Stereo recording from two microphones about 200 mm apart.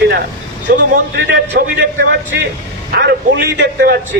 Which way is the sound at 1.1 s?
60° right (ahead or behind).